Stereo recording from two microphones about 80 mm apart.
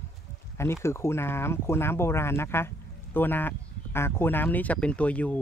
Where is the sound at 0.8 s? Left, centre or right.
Left.